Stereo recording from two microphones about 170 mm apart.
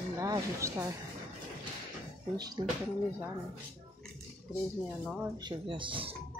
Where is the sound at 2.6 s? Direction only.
30° right (ahead or behind).